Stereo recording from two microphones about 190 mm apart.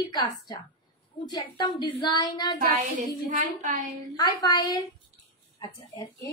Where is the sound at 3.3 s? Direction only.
45° right (ahead or behind).